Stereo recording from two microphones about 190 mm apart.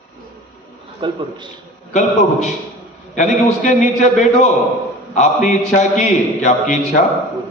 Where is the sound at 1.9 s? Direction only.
40° left (ahead or behind).